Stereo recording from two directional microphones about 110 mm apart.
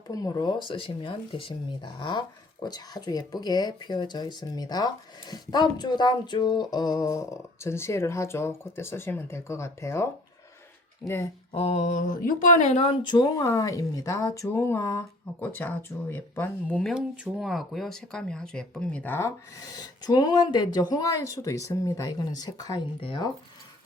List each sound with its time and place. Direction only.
0.1 s speech: 35° left (ahead or behind)
0.7 s speech: 50° left (ahead or behind)
5.3 s a sound: 40° left (ahead or behind)
11.0 s speech: 15° left (ahead or behind)
11.5 s mantra: 70° left (ahead or behind)
12.5 s speech: 90° left
13.0 s a sound: 40° left (ahead or behind); by 16.8 s 15° left (ahead or behind)
16.9 s speech: 5° right (ahead or behind); by 19.3 s 20° left (ahead or behind)
19.5 s speech: 35° left (ahead or behind)
23.0 s speech: 50° left (ahead or behind)